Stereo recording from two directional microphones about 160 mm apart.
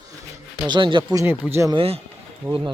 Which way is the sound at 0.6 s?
30° right (ahead or behind).